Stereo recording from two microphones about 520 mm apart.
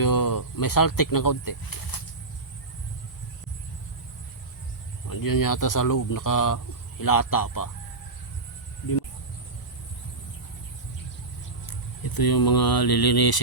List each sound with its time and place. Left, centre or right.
0.0 s speech: left
5.0 s speech: left
11.6 s speech: left